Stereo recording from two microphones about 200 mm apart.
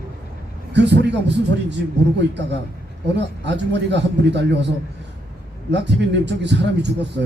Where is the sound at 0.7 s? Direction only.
60° right (ahead or behind).